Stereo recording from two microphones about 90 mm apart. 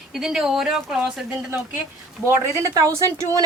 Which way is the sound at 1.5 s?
25° right (ahead or behind).